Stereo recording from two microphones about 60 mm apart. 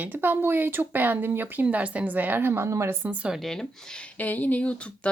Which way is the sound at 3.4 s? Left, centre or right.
Centre.